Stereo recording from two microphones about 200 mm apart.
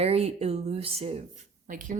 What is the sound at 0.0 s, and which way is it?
A woman's voice, 30° right (ahead or behind).